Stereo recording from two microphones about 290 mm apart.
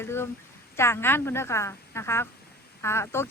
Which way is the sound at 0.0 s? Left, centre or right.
Centre.